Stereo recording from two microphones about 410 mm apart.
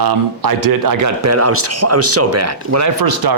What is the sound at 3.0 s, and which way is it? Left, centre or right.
Speech, right.